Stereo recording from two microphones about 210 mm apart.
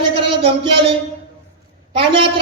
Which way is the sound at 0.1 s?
25° right (ahead or behind).